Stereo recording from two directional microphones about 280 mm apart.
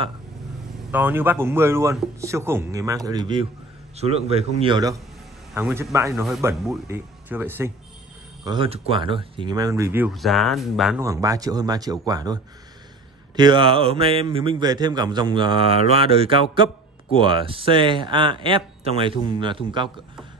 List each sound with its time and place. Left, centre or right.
0.9 s a man's voice: centre
8.5 s speech: centre
13.4 s speech: centre